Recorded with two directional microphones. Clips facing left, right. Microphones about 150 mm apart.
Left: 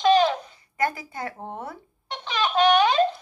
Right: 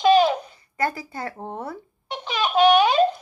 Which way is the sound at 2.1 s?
10° right (ahead or behind).